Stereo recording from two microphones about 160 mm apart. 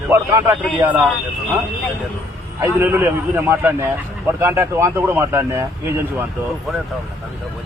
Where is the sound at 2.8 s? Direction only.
15° right (ahead or behind).